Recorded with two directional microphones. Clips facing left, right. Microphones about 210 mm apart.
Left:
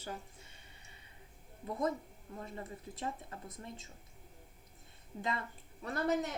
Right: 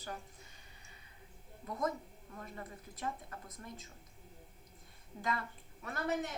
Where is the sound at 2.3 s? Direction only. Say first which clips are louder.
Left 3 dB; 25° left (ahead or behind).